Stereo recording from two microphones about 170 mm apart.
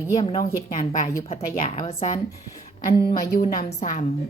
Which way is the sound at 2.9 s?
20° left (ahead or behind).